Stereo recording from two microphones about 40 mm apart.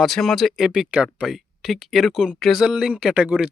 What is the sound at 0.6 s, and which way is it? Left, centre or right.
Speech, centre.